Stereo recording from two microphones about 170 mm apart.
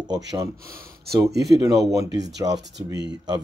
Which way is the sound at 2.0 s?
90° right.